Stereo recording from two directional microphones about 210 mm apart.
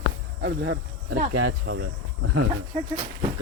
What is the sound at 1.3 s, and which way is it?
Speech, 75° right (ahead or behind).